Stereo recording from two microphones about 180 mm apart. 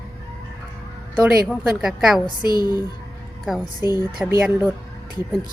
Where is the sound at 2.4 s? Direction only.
25° left (ahead or behind).